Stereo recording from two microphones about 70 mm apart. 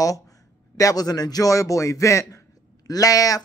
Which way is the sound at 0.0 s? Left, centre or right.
Left.